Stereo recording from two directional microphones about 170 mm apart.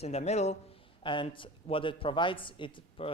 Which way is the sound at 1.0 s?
30° left (ahead or behind).